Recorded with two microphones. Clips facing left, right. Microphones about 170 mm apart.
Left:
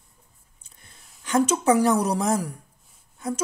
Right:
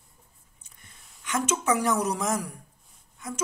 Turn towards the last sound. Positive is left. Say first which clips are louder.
# left 8 dB
turn(degrees=35)  # may be behind; listen again after turning